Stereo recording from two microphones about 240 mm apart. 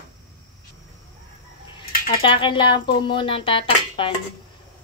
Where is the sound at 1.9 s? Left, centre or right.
Left.